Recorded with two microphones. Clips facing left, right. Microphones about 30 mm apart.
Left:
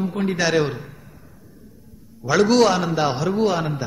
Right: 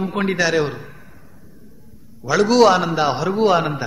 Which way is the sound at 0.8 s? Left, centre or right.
Right.